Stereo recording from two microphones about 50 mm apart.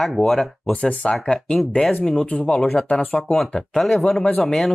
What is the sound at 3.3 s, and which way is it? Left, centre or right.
Speech, centre.